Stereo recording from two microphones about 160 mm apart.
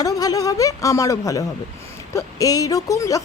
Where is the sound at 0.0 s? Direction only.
20° left (ahead or behind).